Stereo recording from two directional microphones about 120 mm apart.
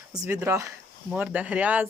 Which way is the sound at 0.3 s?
20° right (ahead or behind).